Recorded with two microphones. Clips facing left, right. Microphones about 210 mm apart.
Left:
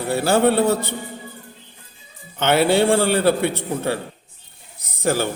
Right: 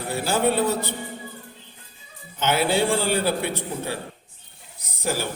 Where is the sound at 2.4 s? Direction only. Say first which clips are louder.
Left 5 dB; 65° left (ahead or behind).